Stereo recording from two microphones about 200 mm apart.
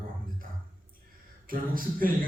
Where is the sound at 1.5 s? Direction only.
45° right (ahead or behind).